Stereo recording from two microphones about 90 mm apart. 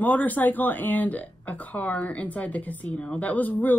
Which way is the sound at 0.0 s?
20° left (ahead or behind).